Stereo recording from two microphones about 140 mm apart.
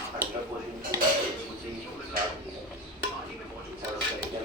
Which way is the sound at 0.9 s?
25° right (ahead or behind).